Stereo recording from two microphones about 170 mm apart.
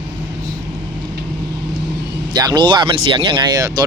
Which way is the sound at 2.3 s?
25° right (ahead or behind).